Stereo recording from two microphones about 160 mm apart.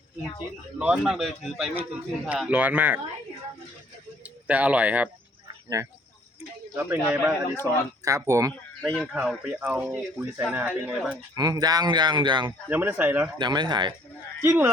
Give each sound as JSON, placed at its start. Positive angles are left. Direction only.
{"t": 0.8, "sound": "speech", "side_deg": -5}
{"t": 4.2, "sound": "speech", "side_deg": -10}
{"t": 5.6, "sound": "speech", "side_deg": -20}
{"t": 8.8, "sound": "speech", "side_deg": 0}
{"t": 11.3, "sound": "speech", "side_deg": -25}
{"t": 12.5, "sound": "speech", "side_deg": -10}
{"t": 13.4, "sound": "speech", "side_deg": -25}
{"t": 14.4, "sound": "speech", "side_deg": -15}